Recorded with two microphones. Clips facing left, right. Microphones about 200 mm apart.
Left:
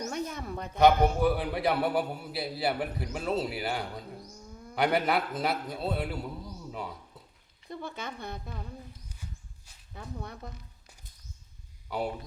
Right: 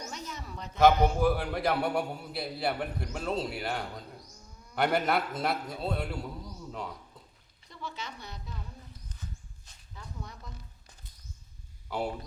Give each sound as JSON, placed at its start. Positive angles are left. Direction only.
{"t": 0.1, "sound": "a sound", "side_deg": 55}
{"t": 0.8, "sound": "a man's voice", "side_deg": 0}
{"t": 7.7, "sound": "speech", "side_deg": 55}
{"t": 9.9, "sound": "speech", "side_deg": 60}
{"t": 11.9, "sound": "a man's voice", "side_deg": 0}